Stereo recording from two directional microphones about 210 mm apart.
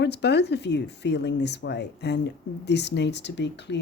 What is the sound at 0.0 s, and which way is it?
Speech, 55° left (ahead or behind).